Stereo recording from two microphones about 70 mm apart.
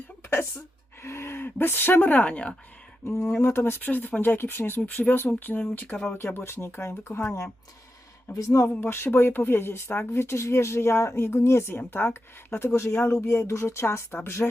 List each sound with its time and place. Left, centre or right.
1.0 s speech: left; by 2.6 s centre
3.2 s speech: centre
3.4 s speech: left
8.4 s speech: left